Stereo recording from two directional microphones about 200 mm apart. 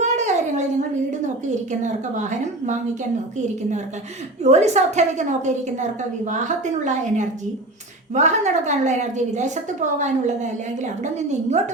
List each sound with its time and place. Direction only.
0.0 s a sound: 35° right (ahead or behind)
1.8 s a woman's voice: 35° right (ahead or behind)
4.4 s a woman's voice: 35° right (ahead or behind)